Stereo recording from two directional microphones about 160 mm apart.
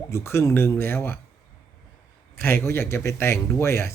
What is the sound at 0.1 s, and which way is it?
Speech, 15° left (ahead or behind).